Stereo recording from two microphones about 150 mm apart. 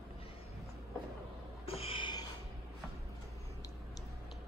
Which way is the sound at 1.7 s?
40° left (ahead or behind).